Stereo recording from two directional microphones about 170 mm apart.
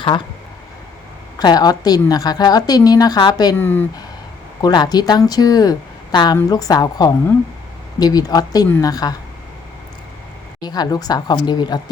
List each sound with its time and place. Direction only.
1.4 s speech: 25° left (ahead or behind)
3.6 s speech: 10° left (ahead or behind)
4.6 s speech: 25° left (ahead or behind)
10.6 s speech: 25° left (ahead or behind)